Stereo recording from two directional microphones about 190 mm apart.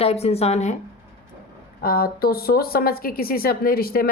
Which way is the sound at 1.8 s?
50° left (ahead or behind).